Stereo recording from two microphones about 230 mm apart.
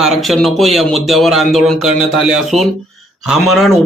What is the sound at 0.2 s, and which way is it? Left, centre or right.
Speech, centre.